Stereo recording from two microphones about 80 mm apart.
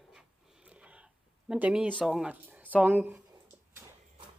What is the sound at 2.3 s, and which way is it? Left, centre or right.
Speech, centre.